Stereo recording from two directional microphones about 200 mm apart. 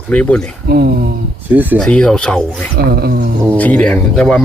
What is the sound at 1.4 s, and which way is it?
Speech, 10° right (ahead or behind).